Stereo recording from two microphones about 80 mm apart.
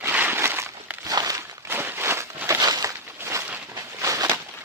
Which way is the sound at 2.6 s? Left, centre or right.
Right.